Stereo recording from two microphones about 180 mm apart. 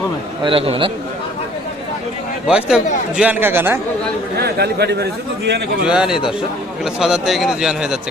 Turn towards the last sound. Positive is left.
turn(degrees=-5)  # may be behind; listen again after turning